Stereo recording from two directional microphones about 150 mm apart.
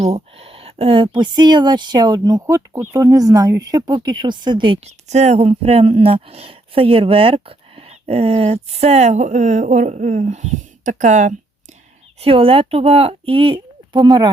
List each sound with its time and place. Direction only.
0.0 s speech: 40° right (ahead or behind)
4.9 s speech: 45° right (ahead or behind)
12.2 s speech: 40° right (ahead or behind)